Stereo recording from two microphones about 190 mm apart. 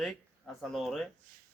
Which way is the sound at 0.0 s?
Centre (ahead or behind).